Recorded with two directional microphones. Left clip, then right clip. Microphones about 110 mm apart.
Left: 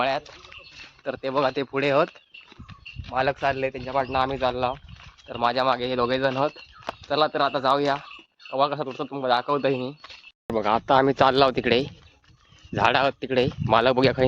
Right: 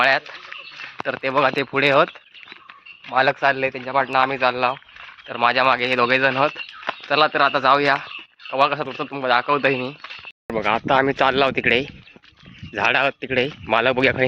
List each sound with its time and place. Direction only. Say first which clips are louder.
1.0 s speech: right 5 dB; 10° right (ahead or behind)
1.7 s a man's voice: right 6 dB; 35° right (ahead or behind)
3.2 s a man's voice: right 6 dB; 35° right (ahead or behind)
4.1 s a man's voice: right 6 dB; 10° right (ahead or behind)
10.5 s speech: right 2 dB; 10° left (ahead or behind); by 14.3 s 25° left (ahead or behind)